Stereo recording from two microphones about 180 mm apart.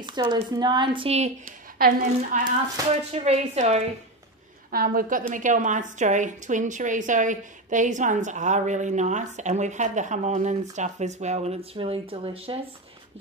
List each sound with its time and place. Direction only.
0.0 s speech: 25° right (ahead or behind)
1.8 s a woman's voice: 55° right (ahead or behind)
3.1 s a woman's voice: 35° right (ahead or behind)
4.6 s a woman's voice: 50° right (ahead or behind); by 12.5 s 30° right (ahead or behind)